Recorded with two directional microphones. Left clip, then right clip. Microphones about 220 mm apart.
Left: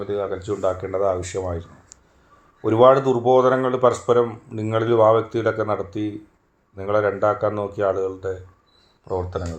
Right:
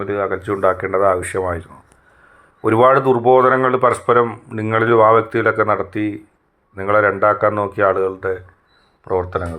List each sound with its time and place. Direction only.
0.1 s speech: 40° right (ahead or behind)
0.4 s speech: 15° right (ahead or behind)